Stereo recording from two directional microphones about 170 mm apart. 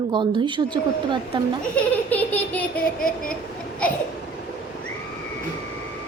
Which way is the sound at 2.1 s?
10° left (ahead or behind).